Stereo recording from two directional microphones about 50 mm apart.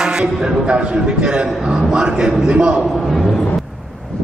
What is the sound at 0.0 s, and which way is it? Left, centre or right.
A man's voice, centre.